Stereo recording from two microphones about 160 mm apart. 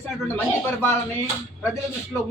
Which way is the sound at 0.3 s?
15° left (ahead or behind).